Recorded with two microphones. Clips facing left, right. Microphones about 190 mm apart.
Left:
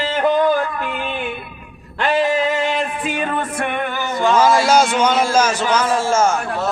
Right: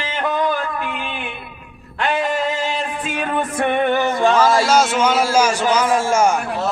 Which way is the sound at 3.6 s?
25° right (ahead or behind).